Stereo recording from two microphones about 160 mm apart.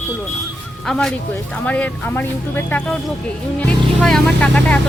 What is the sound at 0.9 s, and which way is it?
A woman's voice, centre (ahead or behind).